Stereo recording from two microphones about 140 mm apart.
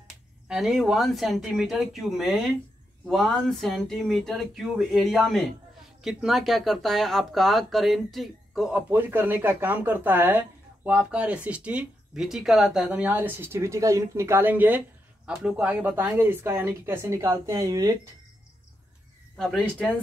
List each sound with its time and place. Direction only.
0.5 s speech: centre (ahead or behind); by 17.9 s 25° right (ahead or behind)
19.3 s speech: 5° left (ahead or behind)